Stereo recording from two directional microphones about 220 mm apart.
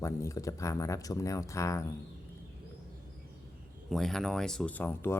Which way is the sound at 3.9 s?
Centre (ahead or behind).